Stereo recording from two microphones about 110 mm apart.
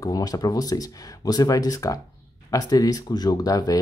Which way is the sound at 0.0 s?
35° left (ahead or behind).